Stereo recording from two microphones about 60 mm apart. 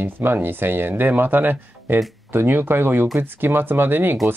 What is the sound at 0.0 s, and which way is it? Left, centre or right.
Speech, right.